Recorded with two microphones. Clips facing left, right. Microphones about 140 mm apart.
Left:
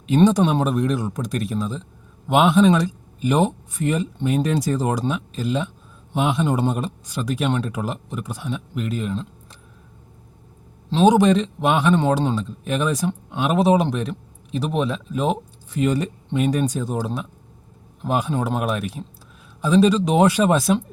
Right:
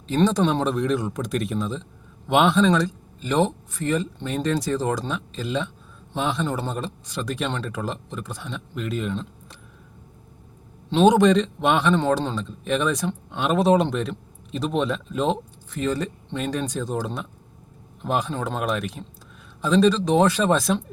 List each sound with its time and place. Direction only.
0.1 s a man's voice: 15° left (ahead or behind)
10.8 s a man's voice: centre (ahead or behind)